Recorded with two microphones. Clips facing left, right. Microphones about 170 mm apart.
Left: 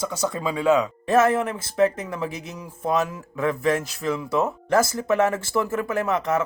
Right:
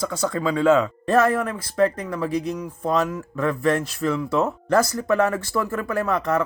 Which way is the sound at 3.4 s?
20° left (ahead or behind).